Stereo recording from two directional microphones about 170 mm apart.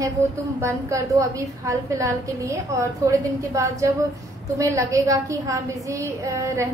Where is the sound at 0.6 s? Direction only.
15° right (ahead or behind).